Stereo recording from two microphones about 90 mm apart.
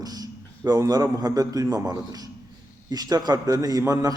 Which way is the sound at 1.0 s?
40° right (ahead or behind).